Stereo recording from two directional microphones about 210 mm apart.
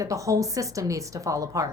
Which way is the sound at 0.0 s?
15° right (ahead or behind).